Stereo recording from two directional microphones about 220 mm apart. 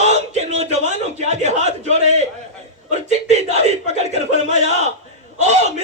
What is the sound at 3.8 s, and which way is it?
Speech, 30° right (ahead or behind).